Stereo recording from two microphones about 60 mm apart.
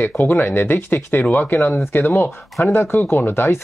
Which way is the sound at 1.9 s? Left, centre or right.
Left.